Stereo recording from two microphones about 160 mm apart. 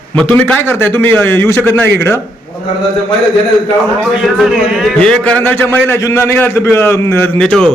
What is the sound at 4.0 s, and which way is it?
A man's voice, centre (ahead or behind).